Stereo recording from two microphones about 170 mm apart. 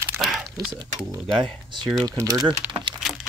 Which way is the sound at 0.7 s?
20° right (ahead or behind).